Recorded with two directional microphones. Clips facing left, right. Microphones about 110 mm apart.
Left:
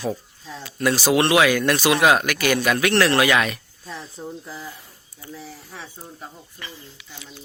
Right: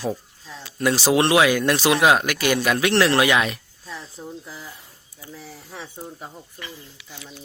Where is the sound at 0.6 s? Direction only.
25° right (ahead or behind).